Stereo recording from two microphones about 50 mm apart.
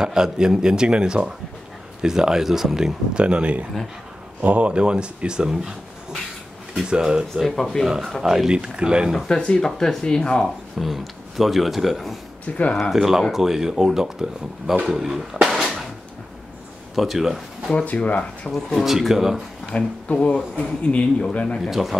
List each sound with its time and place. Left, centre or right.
0.0 s speech: centre
7.4 s speech: centre
8.2 s speech: centre
9.3 s speech: left
9.6 s speech: centre
10.4 s speech: centre
12.5 s speech: left
12.9 s speech: centre
15.4 s a sound: centre
16.9 s speech: centre
17.6 s speech: left
18.5 s speech: centre
19.7 s speech: left
21.5 s speech: centre